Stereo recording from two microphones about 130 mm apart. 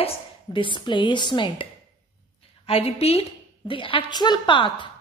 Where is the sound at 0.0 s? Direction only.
40° left (ahead or behind).